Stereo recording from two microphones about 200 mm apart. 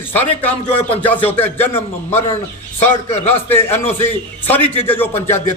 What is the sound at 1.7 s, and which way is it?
Speech, 30° left (ahead or behind).